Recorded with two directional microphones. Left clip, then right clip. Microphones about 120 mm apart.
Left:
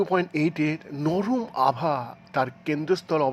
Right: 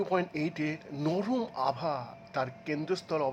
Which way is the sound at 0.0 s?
35° left (ahead or behind).